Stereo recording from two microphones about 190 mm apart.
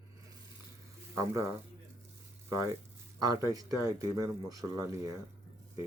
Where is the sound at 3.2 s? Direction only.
20° right (ahead or behind).